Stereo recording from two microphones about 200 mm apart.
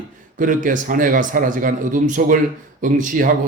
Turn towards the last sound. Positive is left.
turn(degrees=-40)  # may be behind; listen again after turning